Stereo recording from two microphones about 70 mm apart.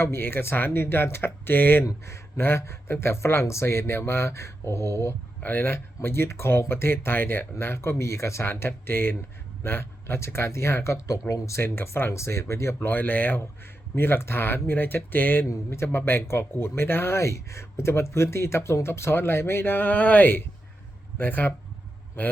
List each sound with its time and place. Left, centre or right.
0.0 s speech: left
1.8 s speech: left
5.4 s speech: left
12.9 s speech: left
15.4 s speech: left